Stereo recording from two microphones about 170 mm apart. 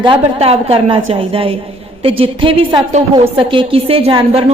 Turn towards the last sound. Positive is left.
turn(degrees=-35)  # may be behind; listen again after turning